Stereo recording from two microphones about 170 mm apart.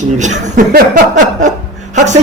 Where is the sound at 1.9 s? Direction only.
45° right (ahead or behind).